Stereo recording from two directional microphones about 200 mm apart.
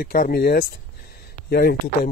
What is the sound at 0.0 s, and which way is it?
Speech, 45° left (ahead or behind).